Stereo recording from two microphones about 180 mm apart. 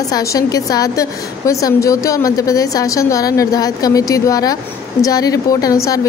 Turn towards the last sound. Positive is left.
turn(degrees=20)  # may be behind; listen again after turning